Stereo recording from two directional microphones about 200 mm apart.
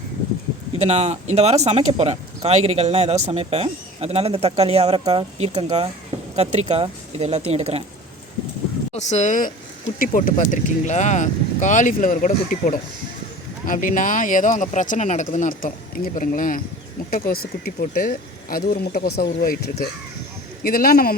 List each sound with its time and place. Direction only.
0.8 s speech: 30° right (ahead or behind)
9.0 s speech: 35° left (ahead or behind)